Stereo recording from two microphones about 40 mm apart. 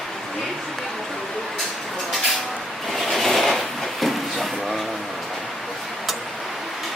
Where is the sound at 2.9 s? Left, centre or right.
Centre.